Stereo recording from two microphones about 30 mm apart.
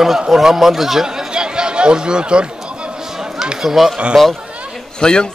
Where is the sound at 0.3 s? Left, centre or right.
Centre.